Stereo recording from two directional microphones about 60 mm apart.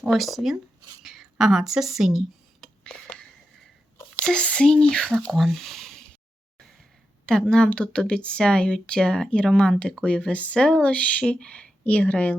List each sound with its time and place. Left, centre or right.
0.1 s speech: centre
2.6 s a sound: centre
4.2 s speech: centre
5.3 s speech: centre
7.3 s speech: centre